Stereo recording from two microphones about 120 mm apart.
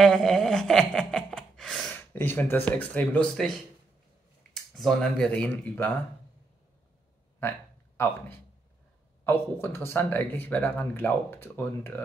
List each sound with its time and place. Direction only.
0.0 s a sound: 5° left (ahead or behind)
2.0 s speech: 15° left (ahead or behind)
9.2 s speech: 20° left (ahead or behind)